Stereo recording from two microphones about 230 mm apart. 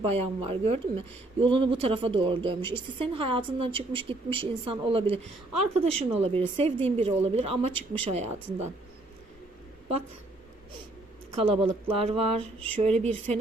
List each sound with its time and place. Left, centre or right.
0.1 s speech: right
11.3 s speech: right